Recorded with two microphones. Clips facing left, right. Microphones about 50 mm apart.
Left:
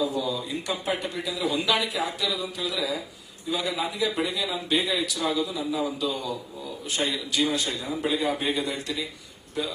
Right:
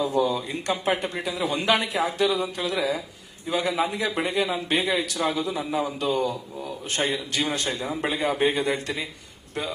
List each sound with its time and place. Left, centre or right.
0.0 s speech: right